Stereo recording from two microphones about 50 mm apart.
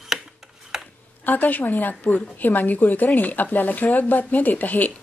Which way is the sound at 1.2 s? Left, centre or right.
Left.